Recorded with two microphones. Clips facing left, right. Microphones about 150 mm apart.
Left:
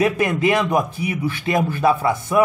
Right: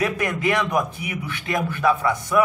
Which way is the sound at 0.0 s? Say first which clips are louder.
Left 5 dB; 25° left (ahead or behind).